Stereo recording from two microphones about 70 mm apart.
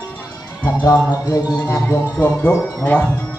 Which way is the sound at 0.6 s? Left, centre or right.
Left.